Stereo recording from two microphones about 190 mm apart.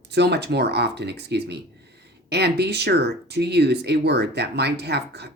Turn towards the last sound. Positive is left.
turn(degrees=-60)  # may be behind; listen again after turning